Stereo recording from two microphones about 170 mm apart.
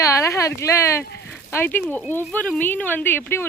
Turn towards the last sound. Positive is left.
turn(degrees=10)  # may be behind; listen again after turning